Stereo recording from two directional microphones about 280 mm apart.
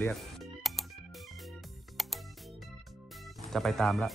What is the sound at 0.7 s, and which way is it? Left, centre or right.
Music, centre.